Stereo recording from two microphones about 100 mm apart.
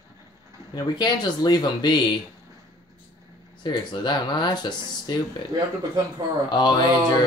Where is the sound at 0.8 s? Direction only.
45° left (ahead or behind).